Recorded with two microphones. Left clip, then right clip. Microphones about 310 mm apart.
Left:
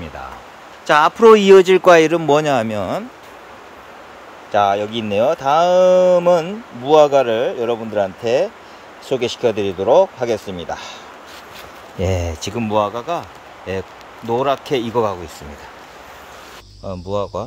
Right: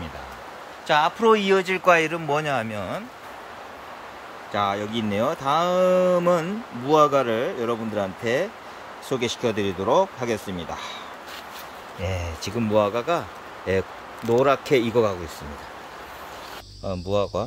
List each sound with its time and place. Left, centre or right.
0.8 s speech: centre
4.5 s speech: centre
12.0 s speech: centre
12.8 s speech: centre
14.3 s speech: centre
16.8 s speech: centre